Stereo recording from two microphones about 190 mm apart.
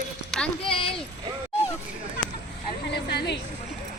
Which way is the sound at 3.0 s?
60° left (ahead or behind).